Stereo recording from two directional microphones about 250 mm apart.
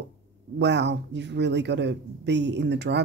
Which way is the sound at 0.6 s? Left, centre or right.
Right.